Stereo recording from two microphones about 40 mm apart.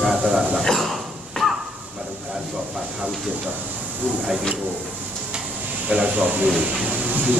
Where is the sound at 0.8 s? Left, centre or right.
Centre.